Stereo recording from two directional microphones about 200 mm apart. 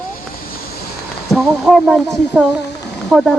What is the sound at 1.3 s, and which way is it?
Humming, centre (ahead or behind).